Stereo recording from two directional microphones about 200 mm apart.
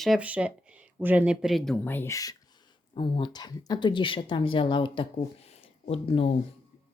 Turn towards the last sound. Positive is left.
turn(degrees=30)  # may be behind; listen again after turning